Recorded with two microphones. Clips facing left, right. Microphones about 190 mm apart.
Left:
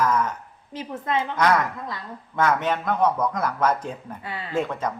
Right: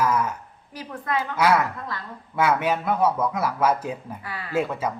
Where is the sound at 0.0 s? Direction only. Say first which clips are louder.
Even; 10° right (ahead or behind).